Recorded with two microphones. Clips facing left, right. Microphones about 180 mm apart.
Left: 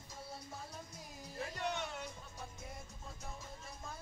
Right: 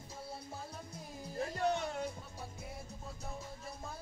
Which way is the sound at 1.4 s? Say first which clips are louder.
Right 6 dB; 35° right (ahead or behind).